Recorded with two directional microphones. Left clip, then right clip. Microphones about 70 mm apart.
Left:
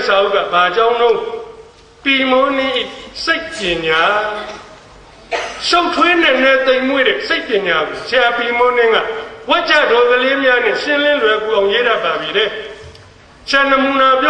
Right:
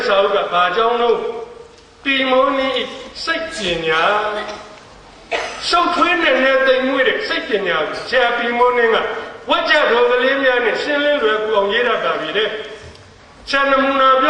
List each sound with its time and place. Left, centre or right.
0.0 s a man's voice: centre
13.6 s speech: centre